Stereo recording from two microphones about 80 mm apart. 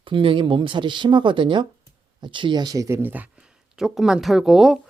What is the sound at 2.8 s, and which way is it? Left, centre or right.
Speech, right.